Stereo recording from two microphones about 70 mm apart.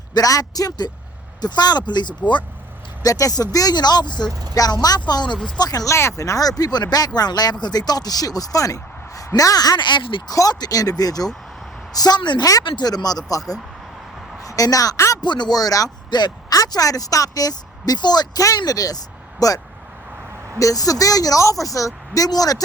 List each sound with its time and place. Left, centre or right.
0.1 s speech: left
1.4 s speech: left
3.0 s speech: left
4.5 s speech: left
5.5 s speech: left
5.9 s speech: left
10.5 s speech: left
11.9 s speech: left
12.5 s a woman's voice: left
15.2 s speech: left
16.6 s speech: left
18.5 s speech: left
22.3 s speech: left